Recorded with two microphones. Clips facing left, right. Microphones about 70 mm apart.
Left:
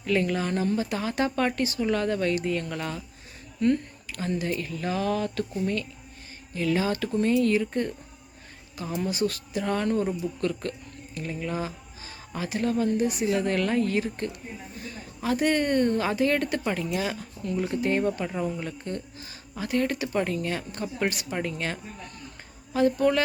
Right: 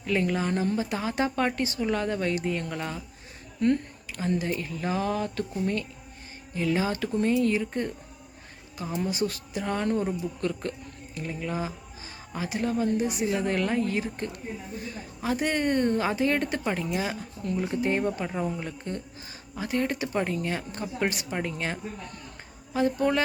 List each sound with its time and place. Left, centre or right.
0.0 s speech: centre
3.6 s speech: right
4.4 s speech: centre
6.5 s speech: centre
9.0 s a woman's voice: centre
11.3 s speech: centre
22.7 s speech: centre